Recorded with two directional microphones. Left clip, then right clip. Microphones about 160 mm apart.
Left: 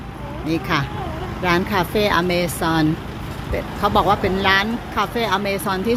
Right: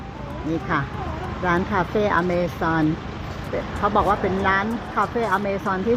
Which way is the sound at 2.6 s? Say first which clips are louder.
Left 2 dB; 10° left (ahead or behind).